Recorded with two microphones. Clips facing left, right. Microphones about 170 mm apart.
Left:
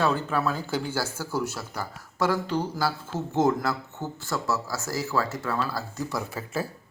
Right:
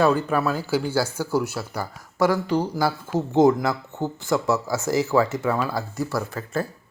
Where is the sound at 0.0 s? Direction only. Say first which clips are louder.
Right 5 dB; 10° right (ahead or behind).